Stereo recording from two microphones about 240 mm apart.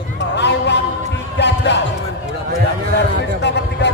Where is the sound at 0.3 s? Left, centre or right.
Left.